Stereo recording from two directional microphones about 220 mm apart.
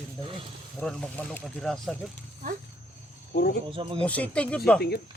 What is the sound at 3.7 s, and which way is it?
Speech, 20° right (ahead or behind).